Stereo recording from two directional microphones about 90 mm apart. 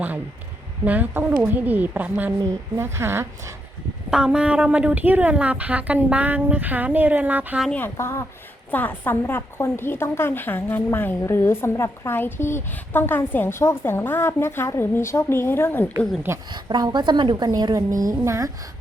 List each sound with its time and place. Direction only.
0.9 s a woman's voice: 20° right (ahead or behind)
2.7 s a woman's voice: 30° right (ahead or behind)
4.1 s a woman's voice: 10° right (ahead or behind)
7.9 s a woman's voice: 30° left (ahead or behind)
16.5 s a woman's voice: 50° right (ahead or behind)
17.7 s a woman's voice: 35° right (ahead or behind)